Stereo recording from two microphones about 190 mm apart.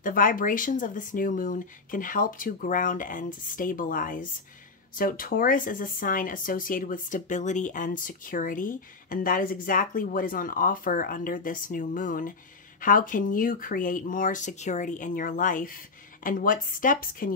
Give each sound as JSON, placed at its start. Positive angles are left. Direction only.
{"t": 0.0, "sound": "speech", "side_deg": 45}